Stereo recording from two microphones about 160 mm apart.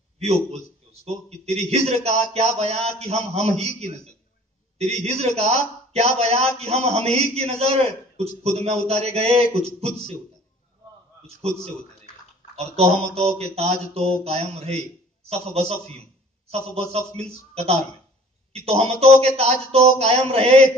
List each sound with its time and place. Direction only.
0.2 s a man's voice: 40° right (ahead or behind)
12.5 s a man's voice: 40° right (ahead or behind)